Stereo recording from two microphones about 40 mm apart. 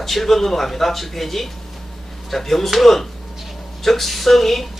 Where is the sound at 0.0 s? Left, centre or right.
Centre.